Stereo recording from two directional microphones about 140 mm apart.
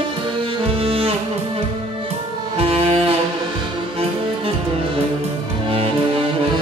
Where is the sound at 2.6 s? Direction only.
45° right (ahead or behind).